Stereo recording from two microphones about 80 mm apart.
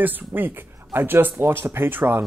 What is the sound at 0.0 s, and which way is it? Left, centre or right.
Speech, right.